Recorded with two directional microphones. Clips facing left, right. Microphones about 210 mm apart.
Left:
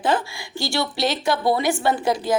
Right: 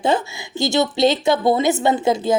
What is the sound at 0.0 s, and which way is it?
Speech, 25° right (ahead or behind).